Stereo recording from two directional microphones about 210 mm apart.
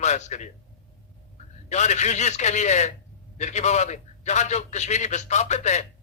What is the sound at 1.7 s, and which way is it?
A man's voice, 35° left (ahead or behind).